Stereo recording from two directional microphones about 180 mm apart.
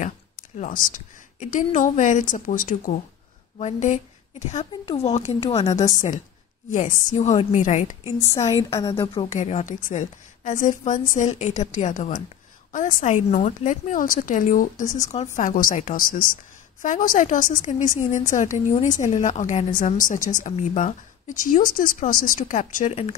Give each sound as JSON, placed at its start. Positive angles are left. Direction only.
{"t": 0.6, "sound": "a woman's voice", "side_deg": 50}
{"t": 6.7, "sound": "a woman's voice", "side_deg": 45}
{"t": 8.6, "sound": "a woman's voice", "side_deg": 15}
{"t": 9.1, "sound": "a woman's voice", "side_deg": 35}